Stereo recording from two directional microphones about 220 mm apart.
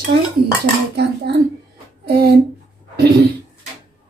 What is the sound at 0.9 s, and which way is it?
Speech, 50° right (ahead or behind).